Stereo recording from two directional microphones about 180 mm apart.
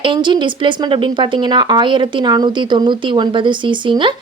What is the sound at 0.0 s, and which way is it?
A woman's voice, 25° right (ahead or behind).